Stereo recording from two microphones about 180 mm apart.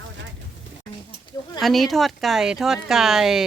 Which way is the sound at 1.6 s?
Centre (ahead or behind).